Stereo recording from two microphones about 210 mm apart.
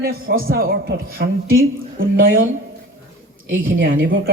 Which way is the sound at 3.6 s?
65° right (ahead or behind).